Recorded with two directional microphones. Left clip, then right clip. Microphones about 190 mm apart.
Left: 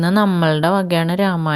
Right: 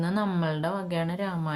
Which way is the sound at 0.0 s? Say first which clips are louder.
Left 12 dB; 45° left (ahead or behind).